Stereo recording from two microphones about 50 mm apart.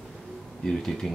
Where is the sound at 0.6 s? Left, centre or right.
Centre.